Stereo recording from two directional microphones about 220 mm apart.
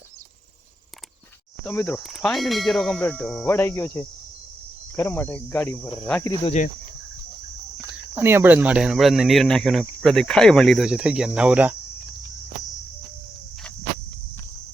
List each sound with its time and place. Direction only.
1.6 s speech: 10° left (ahead or behind)
6.4 s speech: 30° left (ahead or behind)
7.9 s speech: 10° right (ahead or behind)